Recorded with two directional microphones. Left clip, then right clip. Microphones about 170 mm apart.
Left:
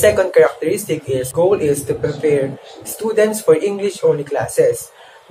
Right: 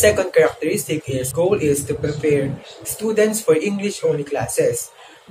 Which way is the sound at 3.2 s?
20° right (ahead or behind).